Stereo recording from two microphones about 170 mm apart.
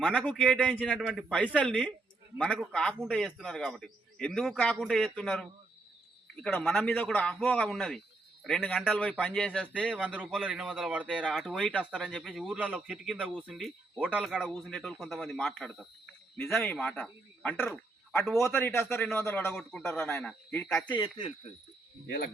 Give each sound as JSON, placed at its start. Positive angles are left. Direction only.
{"t": 0.3, "sound": "a man's voice", "side_deg": 5}
{"t": 10.1, "sound": "a man's voice", "side_deg": -10}
{"t": 20.8, "sound": "speech", "side_deg": 25}
{"t": 22.0, "sound": "speech", "side_deg": 65}